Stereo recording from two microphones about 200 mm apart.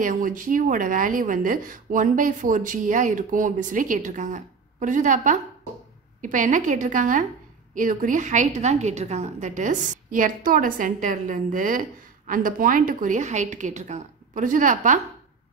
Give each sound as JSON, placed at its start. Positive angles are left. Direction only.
{"t": 0.0, "sound": "speech", "side_deg": -40}